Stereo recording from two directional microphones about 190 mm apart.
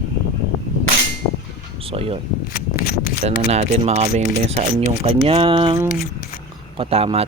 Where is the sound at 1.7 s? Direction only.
30° right (ahead or behind).